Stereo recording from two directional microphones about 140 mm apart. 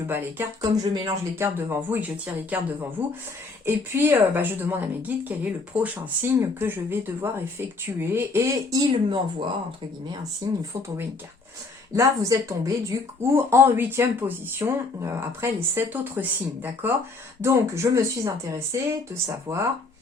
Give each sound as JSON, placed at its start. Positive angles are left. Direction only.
{"t": 0.1, "sound": "a woman's voice", "side_deg": -15}
{"t": 0.6, "sound": "speech", "side_deg": -25}
{"t": 1.5, "sound": "a woman's voice", "side_deg": -15}
{"t": 9.0, "sound": "speech", "side_deg": -35}
{"t": 11.9, "sound": "a woman's voice", "side_deg": -20}